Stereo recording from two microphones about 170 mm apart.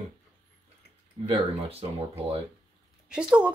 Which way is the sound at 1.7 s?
35° right (ahead or behind).